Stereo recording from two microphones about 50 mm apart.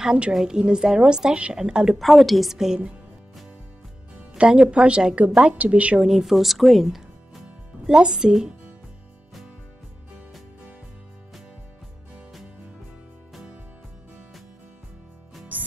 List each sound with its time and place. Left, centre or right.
0.0 s a woman's voice: centre
2.0 s a woman's voice: centre
4.4 s a woman's voice: right
6.0 s speech: centre
7.8 s a woman's voice: centre